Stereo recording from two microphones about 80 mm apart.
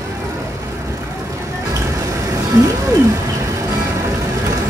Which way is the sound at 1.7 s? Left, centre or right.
Right.